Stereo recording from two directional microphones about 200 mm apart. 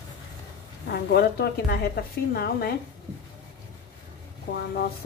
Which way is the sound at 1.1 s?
55° left (ahead or behind).